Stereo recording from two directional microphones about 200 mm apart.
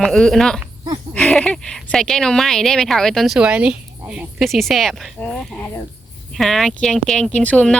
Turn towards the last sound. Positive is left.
turn(degrees=5)  # may be behind; listen again after turning